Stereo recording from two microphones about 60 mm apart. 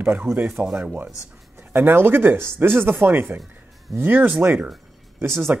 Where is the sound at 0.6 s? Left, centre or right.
Right.